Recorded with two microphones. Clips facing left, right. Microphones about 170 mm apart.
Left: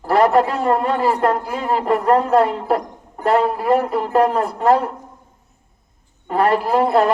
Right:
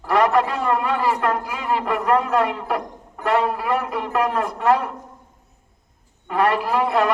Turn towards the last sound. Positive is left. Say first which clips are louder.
# left 4 dB
turn(degrees=35)  # may be behind; listen again after turning